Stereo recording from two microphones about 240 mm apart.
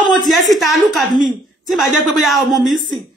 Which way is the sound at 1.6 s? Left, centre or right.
Centre.